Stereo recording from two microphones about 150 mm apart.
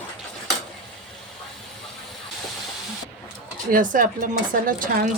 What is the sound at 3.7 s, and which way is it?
Speech, 60° right (ahead or behind).